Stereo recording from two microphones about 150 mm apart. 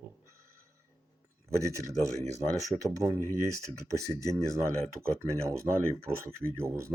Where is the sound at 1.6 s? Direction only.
20° right (ahead or behind).